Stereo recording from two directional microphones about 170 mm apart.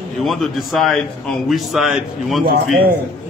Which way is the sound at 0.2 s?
Centre (ahead or behind).